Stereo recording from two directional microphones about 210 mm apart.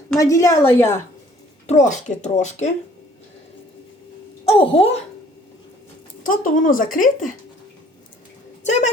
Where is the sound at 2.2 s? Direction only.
35° left (ahead or behind).